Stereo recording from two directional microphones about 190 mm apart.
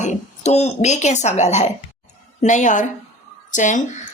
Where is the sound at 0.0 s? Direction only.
35° left (ahead or behind).